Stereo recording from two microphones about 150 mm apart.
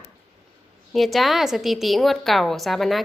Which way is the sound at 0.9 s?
Centre (ahead or behind).